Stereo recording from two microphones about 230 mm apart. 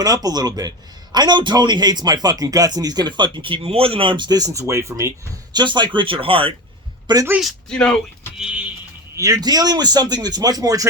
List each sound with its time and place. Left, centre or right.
0.0 s speech: centre
7.3 s speech: centre
9.1 s speech: centre